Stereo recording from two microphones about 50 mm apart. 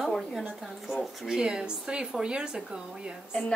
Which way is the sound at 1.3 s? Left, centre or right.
Centre.